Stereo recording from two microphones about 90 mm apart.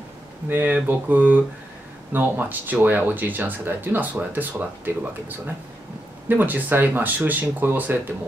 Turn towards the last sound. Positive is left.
turn(degrees=-20)  # may be behind; listen again after turning